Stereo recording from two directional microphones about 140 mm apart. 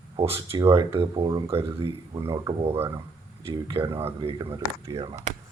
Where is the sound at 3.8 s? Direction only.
20° right (ahead or behind).